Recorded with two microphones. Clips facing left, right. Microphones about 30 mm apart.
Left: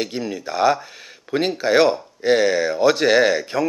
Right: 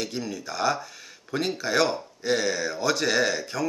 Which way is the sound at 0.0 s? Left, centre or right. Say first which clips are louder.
Left 6 dB; left.